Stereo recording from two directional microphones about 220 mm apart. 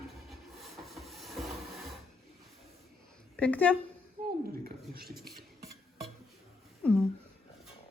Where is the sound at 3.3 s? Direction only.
5° left (ahead or behind).